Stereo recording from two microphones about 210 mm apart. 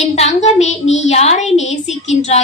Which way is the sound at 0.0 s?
35° left (ahead or behind).